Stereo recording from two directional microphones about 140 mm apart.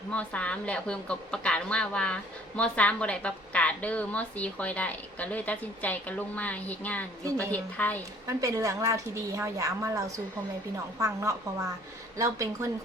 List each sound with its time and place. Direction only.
0.1 s a woman's voice: 10° left (ahead or behind)
8.3 s a woman's voice: 25° right (ahead or behind)